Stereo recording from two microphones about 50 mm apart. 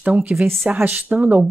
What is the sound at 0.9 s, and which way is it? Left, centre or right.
Speech, right.